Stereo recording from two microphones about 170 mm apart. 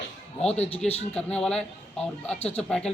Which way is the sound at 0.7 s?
10° left (ahead or behind).